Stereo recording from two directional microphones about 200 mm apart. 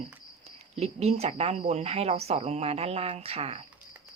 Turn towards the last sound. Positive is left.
turn(degrees=-30)  # may be behind; listen again after turning